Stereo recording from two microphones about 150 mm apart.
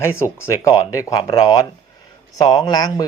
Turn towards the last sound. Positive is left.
turn(degrees=25)  # may be behind; listen again after turning